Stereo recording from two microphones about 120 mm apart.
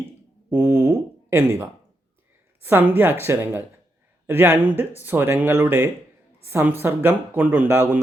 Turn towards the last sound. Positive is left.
turn(degrees=-15)  # may be behind; listen again after turning